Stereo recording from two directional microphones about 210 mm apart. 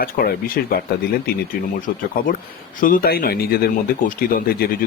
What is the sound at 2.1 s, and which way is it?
A man's voice, 40° left (ahead or behind).